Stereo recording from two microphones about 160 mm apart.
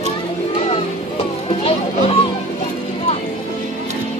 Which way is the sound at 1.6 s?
35° left (ahead or behind).